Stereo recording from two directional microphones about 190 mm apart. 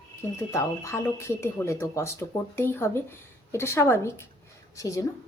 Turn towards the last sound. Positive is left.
turn(degrees=15)  # may be behind; listen again after turning